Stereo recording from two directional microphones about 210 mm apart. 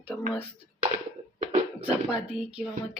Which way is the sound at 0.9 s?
30° right (ahead or behind).